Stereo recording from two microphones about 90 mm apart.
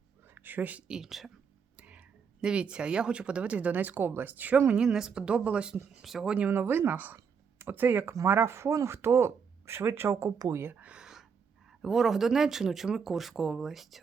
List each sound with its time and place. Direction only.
0.3 s speech: 20° right (ahead or behind); by 1.3 s 5° right (ahead or behind)
1.7 s speech: 15° right (ahead or behind); by 10.3 s 30° right (ahead or behind)
10.5 s a sound: 25° right (ahead or behind); by 11.3 s 5° right (ahead or behind)
11.8 s speech: 5° right (ahead or behind)